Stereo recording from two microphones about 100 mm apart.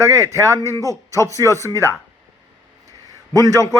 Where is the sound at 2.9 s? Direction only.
35° right (ahead or behind).